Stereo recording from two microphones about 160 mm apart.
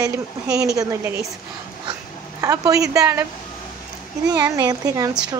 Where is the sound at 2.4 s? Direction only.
20° right (ahead or behind).